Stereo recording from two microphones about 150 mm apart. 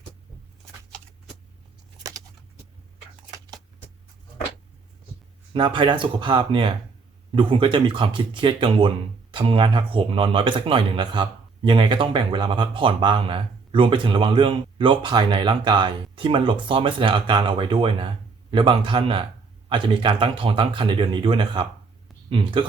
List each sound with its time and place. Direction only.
5.5 s speech: 35° right (ahead or behind)